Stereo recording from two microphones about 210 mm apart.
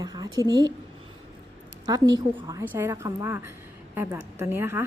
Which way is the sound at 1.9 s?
15° right (ahead or behind).